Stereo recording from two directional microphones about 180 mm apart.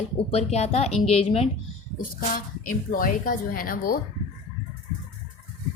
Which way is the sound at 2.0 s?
50° left (ahead or behind).